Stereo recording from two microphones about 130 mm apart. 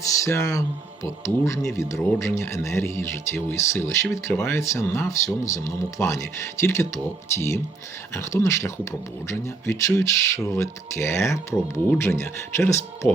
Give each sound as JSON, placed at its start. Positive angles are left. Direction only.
{"t": 0.2, "sound": "speech", "side_deg": 25}